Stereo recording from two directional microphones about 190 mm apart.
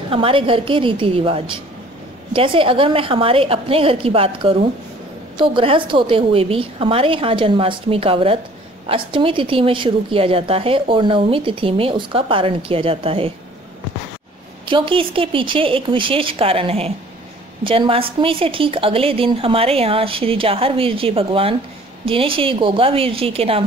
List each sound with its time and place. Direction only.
0.1 s a woman's voice: 30° right (ahead or behind)
14.7 s a woman's voice: 25° right (ahead or behind)